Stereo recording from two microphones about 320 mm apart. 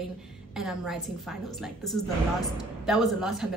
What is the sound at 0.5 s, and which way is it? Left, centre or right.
A woman's voice, centre.